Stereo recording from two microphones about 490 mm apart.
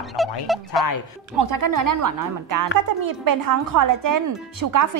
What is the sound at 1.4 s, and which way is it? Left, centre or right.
Speech, right.